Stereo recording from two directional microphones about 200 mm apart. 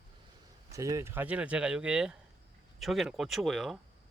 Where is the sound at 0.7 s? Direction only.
15° right (ahead or behind).